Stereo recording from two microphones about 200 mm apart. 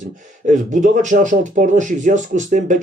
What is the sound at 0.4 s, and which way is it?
Speech, 40° right (ahead or behind).